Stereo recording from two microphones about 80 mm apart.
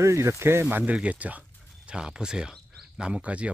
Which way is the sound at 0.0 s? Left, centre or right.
Right.